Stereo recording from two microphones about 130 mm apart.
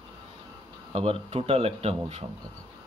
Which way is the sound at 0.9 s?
45° right (ahead or behind).